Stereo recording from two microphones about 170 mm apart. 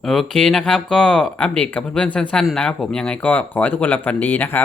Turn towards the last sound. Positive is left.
turn(degrees=10)  # may be behind; listen again after turning